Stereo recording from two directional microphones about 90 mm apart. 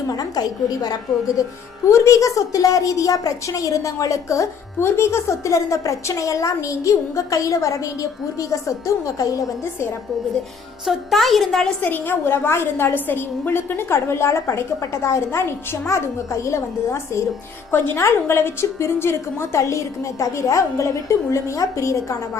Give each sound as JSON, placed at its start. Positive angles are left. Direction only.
{"t": 0.1, "sound": "a woman's voice", "side_deg": 45}
{"t": 10.8, "sound": "a woman's voice", "side_deg": 0}
{"t": 11.8, "sound": "a woman's voice", "side_deg": 20}